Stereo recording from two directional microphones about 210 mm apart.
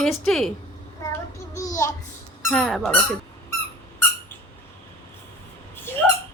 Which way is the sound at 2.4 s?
Centre (ahead or behind).